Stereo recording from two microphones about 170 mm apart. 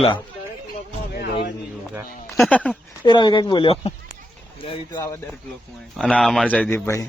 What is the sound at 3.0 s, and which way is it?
Speech, 25° left (ahead or behind).